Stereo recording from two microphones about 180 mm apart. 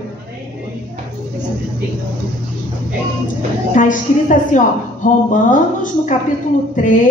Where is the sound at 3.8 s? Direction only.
45° left (ahead or behind).